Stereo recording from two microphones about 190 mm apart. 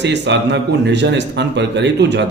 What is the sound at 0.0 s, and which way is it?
A man's voice, 65° right (ahead or behind).